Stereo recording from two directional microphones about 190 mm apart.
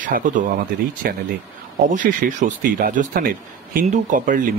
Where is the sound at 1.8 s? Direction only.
45° right (ahead or behind).